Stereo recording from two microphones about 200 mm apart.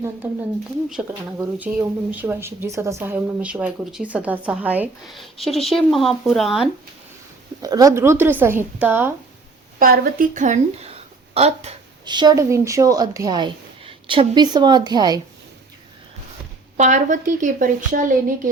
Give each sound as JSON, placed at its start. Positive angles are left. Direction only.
{"t": 1.4, "sound": "a woman's voice", "side_deg": -10}
{"t": 7.6, "sound": "a woman's voice", "side_deg": -20}
{"t": 9.7, "sound": "a woman's voice", "side_deg": -45}
{"t": 16.7, "sound": "a woman's voice", "side_deg": -35}